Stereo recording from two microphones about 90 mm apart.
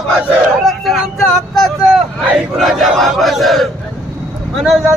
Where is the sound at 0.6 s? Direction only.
Centre (ahead or behind).